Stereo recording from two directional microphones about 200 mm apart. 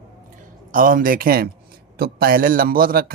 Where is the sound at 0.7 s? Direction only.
45° right (ahead or behind).